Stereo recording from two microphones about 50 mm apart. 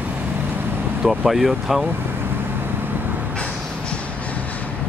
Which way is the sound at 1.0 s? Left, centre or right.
Centre.